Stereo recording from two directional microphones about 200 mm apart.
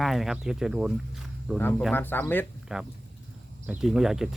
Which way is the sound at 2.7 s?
5° right (ahead or behind).